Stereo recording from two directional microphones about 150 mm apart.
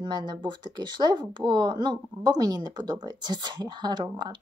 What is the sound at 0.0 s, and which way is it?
Speech, 30° right (ahead or behind).